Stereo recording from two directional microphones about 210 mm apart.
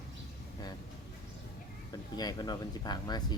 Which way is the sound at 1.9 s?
20° left (ahead or behind).